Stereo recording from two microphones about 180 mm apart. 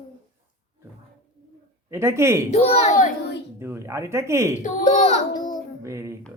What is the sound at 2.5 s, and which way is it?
Speech, 35° left (ahead or behind).